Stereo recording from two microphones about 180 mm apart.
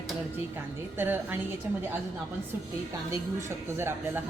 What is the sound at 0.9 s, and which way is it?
Speech, 10° right (ahead or behind).